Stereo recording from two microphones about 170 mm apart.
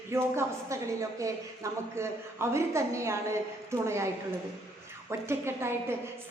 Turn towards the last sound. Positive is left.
turn(degrees=-15)  # may be behind; listen again after turning